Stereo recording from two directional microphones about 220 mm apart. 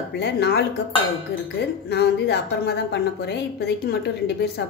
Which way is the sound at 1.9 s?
50° left (ahead or behind).